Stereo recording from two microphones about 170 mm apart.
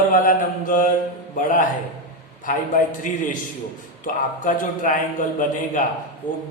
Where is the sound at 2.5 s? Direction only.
50° left (ahead or behind).